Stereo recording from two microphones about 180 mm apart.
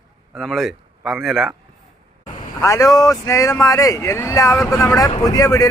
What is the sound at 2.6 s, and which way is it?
Speech, 20° left (ahead or behind).